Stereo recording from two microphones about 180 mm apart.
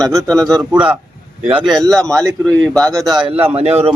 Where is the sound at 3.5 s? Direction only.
35° right (ahead or behind).